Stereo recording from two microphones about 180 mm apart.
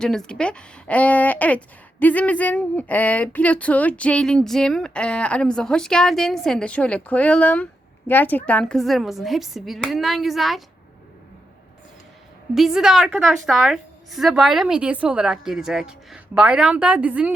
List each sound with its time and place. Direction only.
0.0 s a woman's voice: 5° left (ahead or behind)
12.5 s a woman's voice: centre (ahead or behind)